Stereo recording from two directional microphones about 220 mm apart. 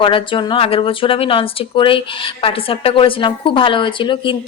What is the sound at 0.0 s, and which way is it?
Speech, 25° left (ahead or behind).